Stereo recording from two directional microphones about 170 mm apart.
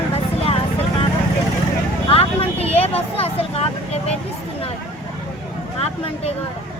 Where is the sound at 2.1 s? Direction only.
35° left (ahead or behind).